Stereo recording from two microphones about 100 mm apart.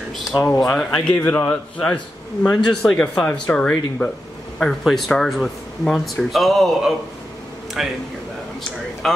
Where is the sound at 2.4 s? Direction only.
10° left (ahead or behind).